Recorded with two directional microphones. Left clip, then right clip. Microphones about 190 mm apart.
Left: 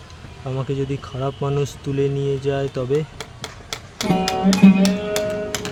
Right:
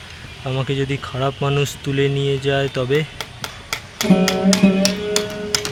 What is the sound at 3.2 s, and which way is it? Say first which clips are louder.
Music: right 4 dB; 55° left (ahead or behind).